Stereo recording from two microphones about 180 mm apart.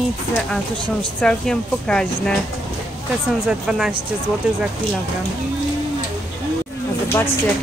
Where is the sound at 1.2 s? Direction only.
5° left (ahead or behind).